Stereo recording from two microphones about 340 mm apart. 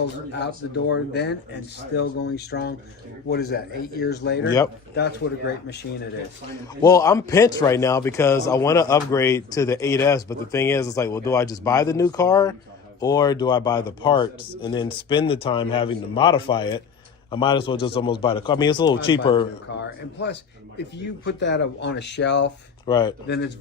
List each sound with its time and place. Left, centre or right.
0.9 s speech: left
6.8 s a man's voice: centre
19.6 s speech: left
22.9 s a man's voice: centre
23.2 s speech: left